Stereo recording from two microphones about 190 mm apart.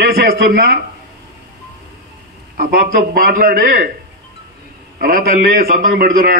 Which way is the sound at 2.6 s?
45° right (ahead or behind).